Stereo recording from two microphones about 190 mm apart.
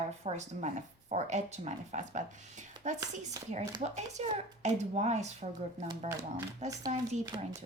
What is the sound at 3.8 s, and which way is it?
A woman's voice, 35° right (ahead or behind).